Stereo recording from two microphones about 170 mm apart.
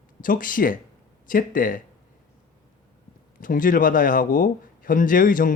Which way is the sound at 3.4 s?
55° left (ahead or behind).